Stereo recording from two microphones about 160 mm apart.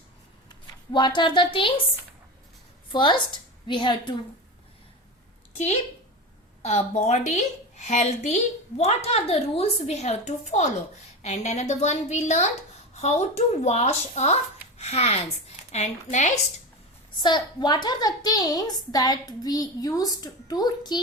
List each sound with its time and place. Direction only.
0.4 s speech: 30° left (ahead or behind)
2.9 s a woman's voice: 30° left (ahead or behind)
5.5 s a woman's voice: 40° left (ahead or behind)
17.2 s a woman's voice: 25° left (ahead or behind)